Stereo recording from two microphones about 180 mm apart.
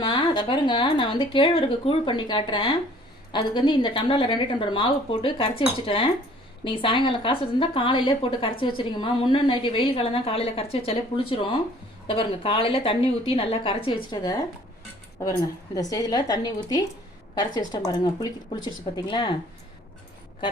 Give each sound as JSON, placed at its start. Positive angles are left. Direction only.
{"t": 0.0, "sound": "a woman's voice", "side_deg": 25}
{"t": 15.7, "sound": "a woman's voice", "side_deg": 20}